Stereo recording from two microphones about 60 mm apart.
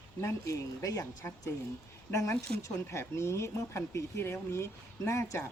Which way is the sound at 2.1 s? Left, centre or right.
Left.